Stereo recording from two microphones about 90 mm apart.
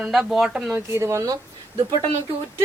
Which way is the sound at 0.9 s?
30° right (ahead or behind).